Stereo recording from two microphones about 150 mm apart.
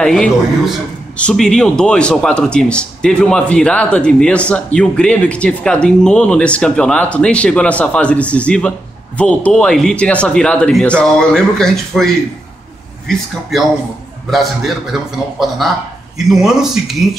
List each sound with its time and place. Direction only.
0.0 s a man's voice: 5° left (ahead or behind)
14.3 s speech: centre (ahead or behind)